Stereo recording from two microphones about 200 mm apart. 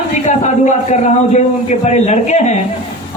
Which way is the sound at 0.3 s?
35° left (ahead or behind).